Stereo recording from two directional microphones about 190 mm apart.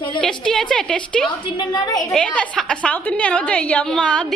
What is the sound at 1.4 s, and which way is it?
Speech, 25° left (ahead or behind).